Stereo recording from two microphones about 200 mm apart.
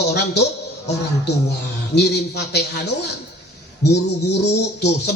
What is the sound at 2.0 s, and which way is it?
Speech, 55° left (ahead or behind).